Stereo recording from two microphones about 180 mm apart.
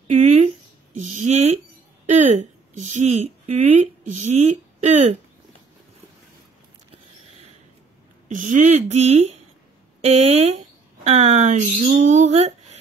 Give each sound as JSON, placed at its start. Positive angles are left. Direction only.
{"t": 0.1, "sound": "a woman's voice", "side_deg": -40}
{"t": 8.3, "sound": "speech", "side_deg": -45}